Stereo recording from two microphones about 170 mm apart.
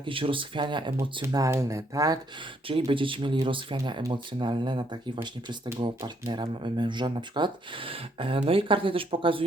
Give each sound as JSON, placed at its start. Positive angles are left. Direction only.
{"t": 0.0, "sound": "speech", "side_deg": -30}
{"t": 2.6, "sound": "speech", "side_deg": -30}